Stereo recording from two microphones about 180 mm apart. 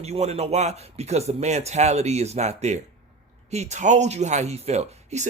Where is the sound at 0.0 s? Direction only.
35° right (ahead or behind).